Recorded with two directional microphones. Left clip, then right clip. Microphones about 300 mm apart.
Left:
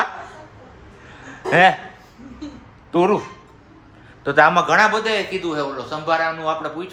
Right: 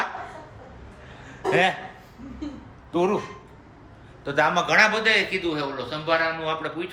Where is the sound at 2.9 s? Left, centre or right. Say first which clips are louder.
Left 6 dB; left.